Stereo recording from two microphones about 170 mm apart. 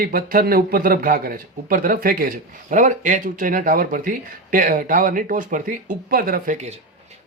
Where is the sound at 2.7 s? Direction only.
50° right (ahead or behind).